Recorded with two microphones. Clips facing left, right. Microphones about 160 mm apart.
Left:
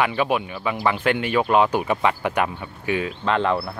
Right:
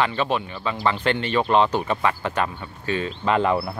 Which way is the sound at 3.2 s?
5° right (ahead or behind).